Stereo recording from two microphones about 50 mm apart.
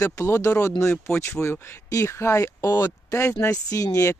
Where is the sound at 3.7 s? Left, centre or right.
Left.